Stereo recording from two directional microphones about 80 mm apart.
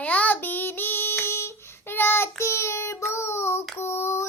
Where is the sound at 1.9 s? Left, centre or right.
Left.